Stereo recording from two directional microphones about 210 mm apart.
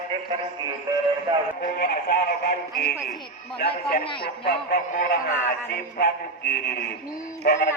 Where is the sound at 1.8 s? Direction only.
45° left (ahead or behind).